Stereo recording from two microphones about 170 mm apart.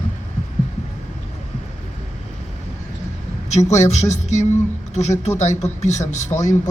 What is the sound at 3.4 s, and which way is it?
A man's voice, 40° left (ahead or behind).